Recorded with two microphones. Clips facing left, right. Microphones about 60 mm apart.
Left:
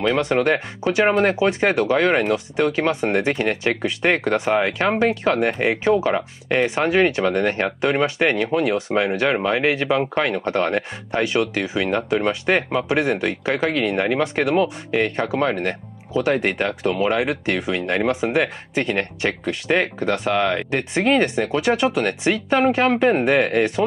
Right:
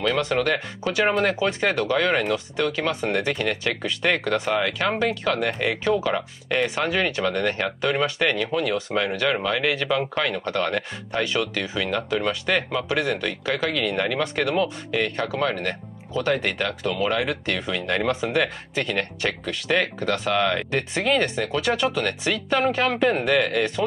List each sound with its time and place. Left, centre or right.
0.2 s speech: left
16.1 s speech: centre
16.4 s speech: left